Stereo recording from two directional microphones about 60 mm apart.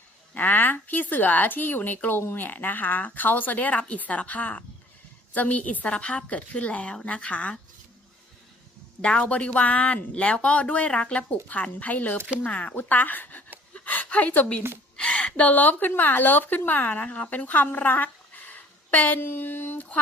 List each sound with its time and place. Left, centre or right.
0.3 s a woman's voice: left
9.0 s a woman's voice: centre
13.7 s a sound: left
14.9 s a woman's voice: centre
17.4 s a sound: left
19.2 s speech: left